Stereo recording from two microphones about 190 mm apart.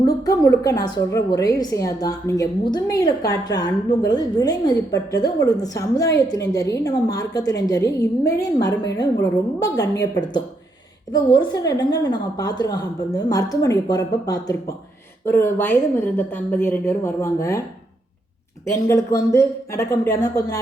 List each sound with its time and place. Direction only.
0.0 s a woman's voice: 20° left (ahead or behind)
18.6 s a woman's voice: 15° left (ahead or behind)